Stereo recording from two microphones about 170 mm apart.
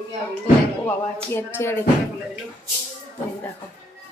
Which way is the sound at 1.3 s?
15° left (ahead or behind).